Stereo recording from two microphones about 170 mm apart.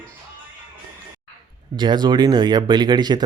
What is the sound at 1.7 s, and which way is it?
Speech, 25° right (ahead or behind).